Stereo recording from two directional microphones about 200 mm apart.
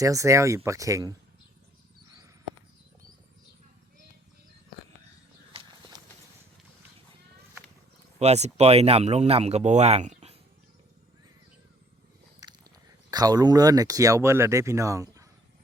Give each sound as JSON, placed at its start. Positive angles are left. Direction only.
{"t": 0.0, "sound": "speech", "side_deg": -15}
{"t": 5.5, "sound": "walk", "side_deg": -25}
{"t": 8.2, "sound": "speech", "side_deg": -35}
{"t": 12.4, "sound": "a sound", "side_deg": -15}
{"t": 13.1, "sound": "speech", "side_deg": -20}